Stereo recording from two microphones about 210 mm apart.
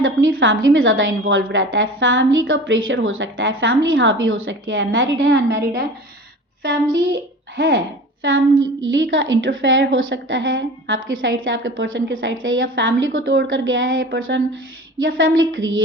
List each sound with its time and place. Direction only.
0.0 s a woman's voice: 70° right (ahead or behind)
6.6 s a child's voice: 45° right (ahead or behind)
7.1 s a child's voice: 65° right (ahead or behind)